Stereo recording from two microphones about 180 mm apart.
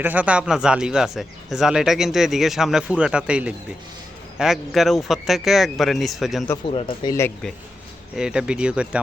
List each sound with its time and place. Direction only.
0.0 s speech: 10° right (ahead or behind)
6.7 s speech: 30° left (ahead or behind)
8.1 s speech: 5° right (ahead or behind)